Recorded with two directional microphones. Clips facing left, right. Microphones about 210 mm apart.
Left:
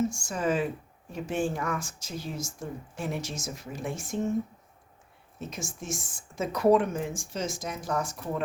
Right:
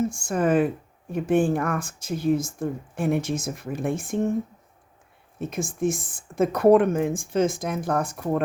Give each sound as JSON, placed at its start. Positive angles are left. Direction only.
{"t": 0.1, "sound": "speech", "side_deg": -55}
{"t": 5.4, "sound": "speech", "side_deg": -55}